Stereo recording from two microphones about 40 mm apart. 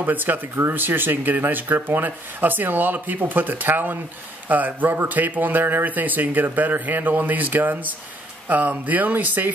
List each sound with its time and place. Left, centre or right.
0.0 s speech: right
4.5 s speech: right